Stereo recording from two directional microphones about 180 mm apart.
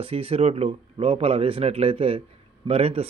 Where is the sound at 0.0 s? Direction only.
30° right (ahead or behind).